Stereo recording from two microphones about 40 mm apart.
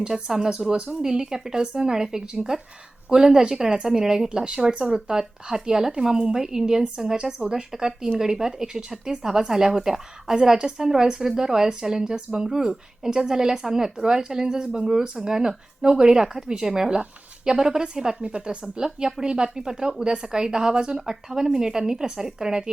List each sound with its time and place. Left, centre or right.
0.1 s speech: centre